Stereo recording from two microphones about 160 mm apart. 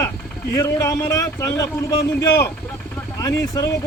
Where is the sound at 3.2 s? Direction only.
20° left (ahead or behind).